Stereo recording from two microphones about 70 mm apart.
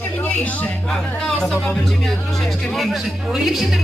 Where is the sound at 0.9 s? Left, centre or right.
Centre.